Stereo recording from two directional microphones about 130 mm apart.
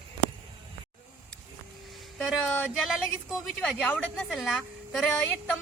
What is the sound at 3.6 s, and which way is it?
Speech, 10° left (ahead or behind).